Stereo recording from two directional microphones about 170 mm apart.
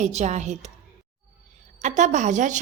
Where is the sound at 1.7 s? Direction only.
45° right (ahead or behind).